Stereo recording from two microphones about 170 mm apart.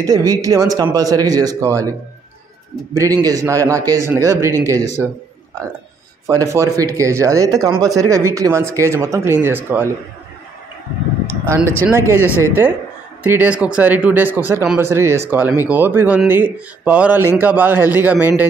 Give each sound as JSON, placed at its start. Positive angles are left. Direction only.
{"t": 0.0, "sound": "a man's voice", "side_deg": -20}
{"t": 6.2, "sound": "a man's voice", "side_deg": -20}
{"t": 11.4, "sound": "speech", "side_deg": -15}